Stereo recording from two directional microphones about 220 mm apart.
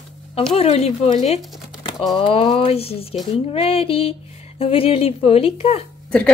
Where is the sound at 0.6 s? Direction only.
30° left (ahead or behind).